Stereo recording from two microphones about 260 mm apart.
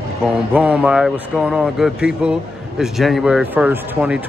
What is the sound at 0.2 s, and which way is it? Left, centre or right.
Speech, centre.